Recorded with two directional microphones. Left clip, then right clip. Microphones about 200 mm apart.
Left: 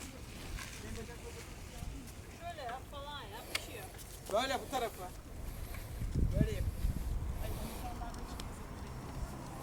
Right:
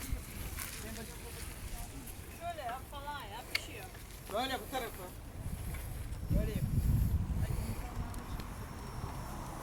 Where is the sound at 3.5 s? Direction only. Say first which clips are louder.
Right 3 dB; 55° left (ahead or behind).